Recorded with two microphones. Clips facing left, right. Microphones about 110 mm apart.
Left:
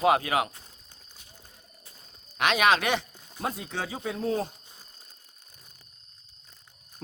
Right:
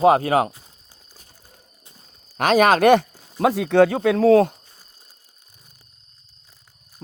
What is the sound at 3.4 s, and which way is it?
Speech, 85° right.